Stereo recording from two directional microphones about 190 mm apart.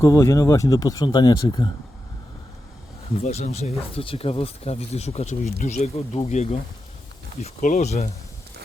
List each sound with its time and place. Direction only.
0.0 s speech: 20° left (ahead or behind)
3.2 s speech: 35° left (ahead or behind)